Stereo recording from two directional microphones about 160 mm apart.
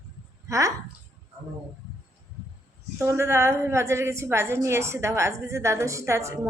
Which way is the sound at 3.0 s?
15° right (ahead or behind).